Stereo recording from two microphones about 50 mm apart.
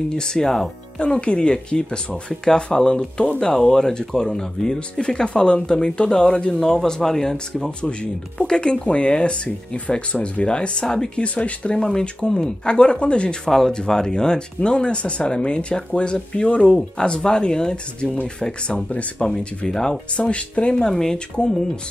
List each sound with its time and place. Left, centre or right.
0.1 s speech: centre
11.1 s speech: left
19.2 s speech: centre
20.9 s speech: centre